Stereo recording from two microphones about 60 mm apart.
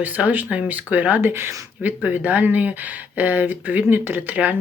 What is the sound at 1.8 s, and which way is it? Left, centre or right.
Speech, right.